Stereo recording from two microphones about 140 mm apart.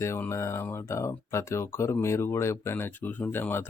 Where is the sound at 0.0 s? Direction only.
20° left (ahead or behind).